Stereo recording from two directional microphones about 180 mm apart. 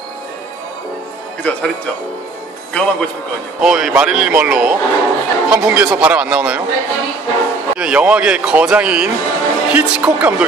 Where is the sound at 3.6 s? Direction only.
Centre (ahead or behind).